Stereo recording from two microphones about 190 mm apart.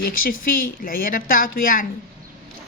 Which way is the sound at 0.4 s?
50° left (ahead or behind).